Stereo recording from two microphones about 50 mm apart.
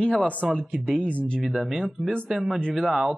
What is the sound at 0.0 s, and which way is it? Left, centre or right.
Speech, centre.